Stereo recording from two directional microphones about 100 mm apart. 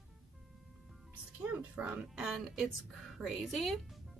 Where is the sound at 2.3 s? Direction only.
Centre (ahead or behind).